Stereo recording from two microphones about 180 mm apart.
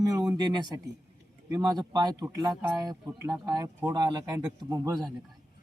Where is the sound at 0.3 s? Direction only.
25° right (ahead or behind).